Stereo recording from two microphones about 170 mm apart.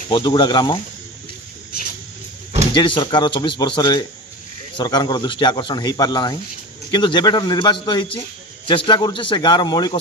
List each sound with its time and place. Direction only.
0.1 s speech: 25° left (ahead or behind)
2.7 s speech: 30° left (ahead or behind)